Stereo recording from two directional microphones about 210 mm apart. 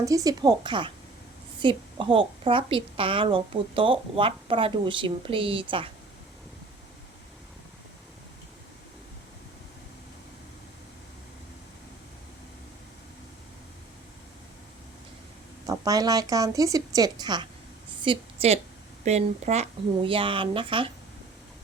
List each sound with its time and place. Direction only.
0.0 s a woman's voice: 15° right (ahead or behind)
15.6 s a woman's voice: 15° right (ahead or behind)